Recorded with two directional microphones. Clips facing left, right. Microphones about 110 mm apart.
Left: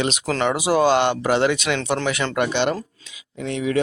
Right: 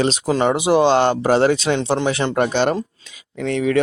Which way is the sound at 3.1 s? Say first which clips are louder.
Right 5 dB; 50° right (ahead or behind).